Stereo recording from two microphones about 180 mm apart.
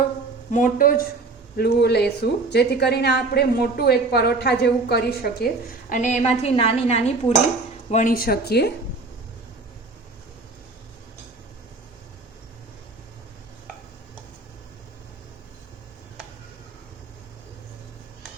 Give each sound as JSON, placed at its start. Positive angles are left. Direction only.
{"t": 0.5, "sound": "speech", "side_deg": 50}
{"t": 1.5, "sound": "a woman's voice", "side_deg": 65}
{"t": 5.9, "sound": "a woman's voice", "side_deg": 40}